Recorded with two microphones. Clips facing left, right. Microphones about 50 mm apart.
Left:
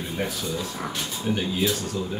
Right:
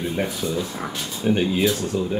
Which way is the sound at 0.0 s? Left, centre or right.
Centre.